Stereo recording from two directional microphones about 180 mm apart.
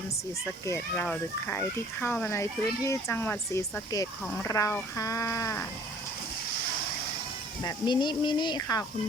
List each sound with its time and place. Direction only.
0.9 s speech: 5° left (ahead or behind)
7.6 s speech: 25° left (ahead or behind)